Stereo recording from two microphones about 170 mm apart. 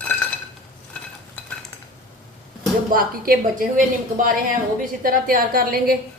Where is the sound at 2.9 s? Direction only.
60° right (ahead or behind).